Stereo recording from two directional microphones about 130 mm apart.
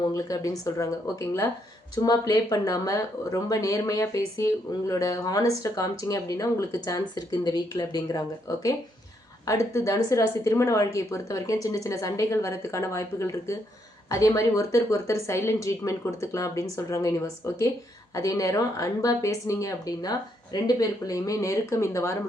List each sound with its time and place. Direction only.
0.1 s speech: 25° left (ahead or behind)